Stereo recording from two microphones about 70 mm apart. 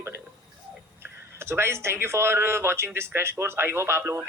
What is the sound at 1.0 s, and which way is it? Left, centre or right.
Speech, right.